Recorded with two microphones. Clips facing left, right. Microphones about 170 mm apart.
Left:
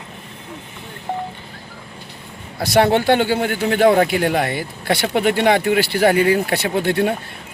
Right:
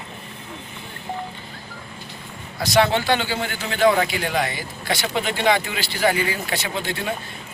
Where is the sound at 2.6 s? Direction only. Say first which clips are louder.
Left 4 dB; 55° left (ahead or behind).